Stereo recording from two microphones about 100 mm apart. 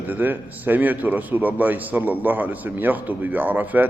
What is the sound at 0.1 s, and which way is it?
A man's voice, 20° right (ahead or behind).